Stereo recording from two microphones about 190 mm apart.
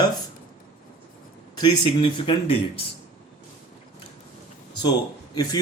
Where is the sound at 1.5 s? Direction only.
25° left (ahead or behind).